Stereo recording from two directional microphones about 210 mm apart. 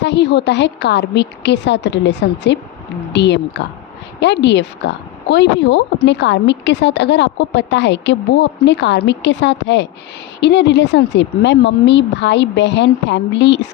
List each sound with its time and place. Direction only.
0.0 s speech: 55° left (ahead or behind)